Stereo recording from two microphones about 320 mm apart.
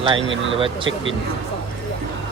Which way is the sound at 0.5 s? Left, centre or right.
Centre.